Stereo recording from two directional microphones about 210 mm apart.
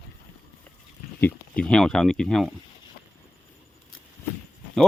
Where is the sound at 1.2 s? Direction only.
5° left (ahead or behind).